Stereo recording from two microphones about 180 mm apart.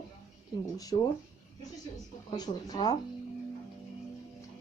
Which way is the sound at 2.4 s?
20° left (ahead or behind).